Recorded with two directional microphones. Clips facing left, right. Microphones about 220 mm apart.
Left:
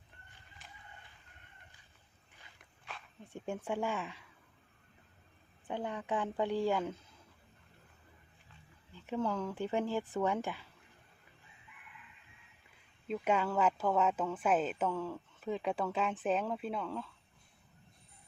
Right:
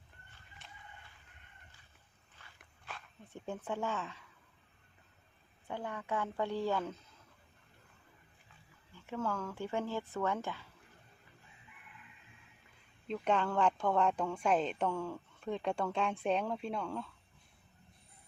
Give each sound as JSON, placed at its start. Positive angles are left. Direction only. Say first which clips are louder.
{"t": 2.4, "sound": "walk", "louder": "even", "side_deg": 15}
{"t": 3.3, "sound": "speech", "louder": "left 2 dB", "side_deg": 15}
{"t": 5.6, "sound": "speech", "louder": "left 3 dB", "side_deg": 20}
{"t": 9.0, "sound": "speech", "louder": "left 3 dB", "side_deg": 15}
{"t": 13.1, "sound": "speech", "louder": "even", "side_deg": 10}